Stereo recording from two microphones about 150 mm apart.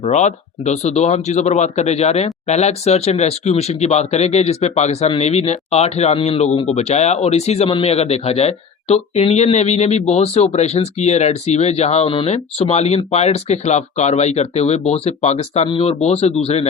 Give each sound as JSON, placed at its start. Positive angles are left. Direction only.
{"t": 0.0, "sound": "speech", "side_deg": 50}